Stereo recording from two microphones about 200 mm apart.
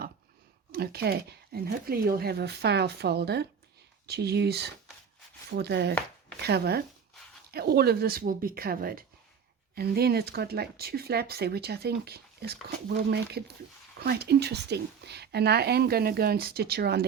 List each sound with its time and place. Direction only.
0.7 s speech: 50° right (ahead or behind)